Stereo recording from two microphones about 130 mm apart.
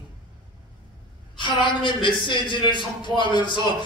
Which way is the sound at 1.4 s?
40° left (ahead or behind).